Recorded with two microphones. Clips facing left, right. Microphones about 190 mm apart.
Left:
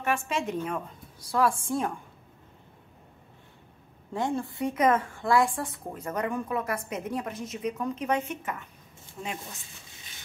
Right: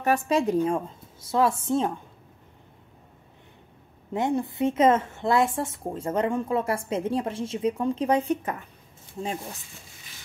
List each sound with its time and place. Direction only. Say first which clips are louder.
0.0 s a woman's voice: right 6 dB; 35° right (ahead or behind)
4.1 s a woman's voice: right 4 dB; 20° right (ahead or behind)